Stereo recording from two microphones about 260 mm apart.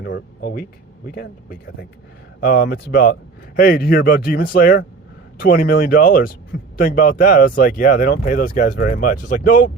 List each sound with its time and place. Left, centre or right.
0.0 s speech: left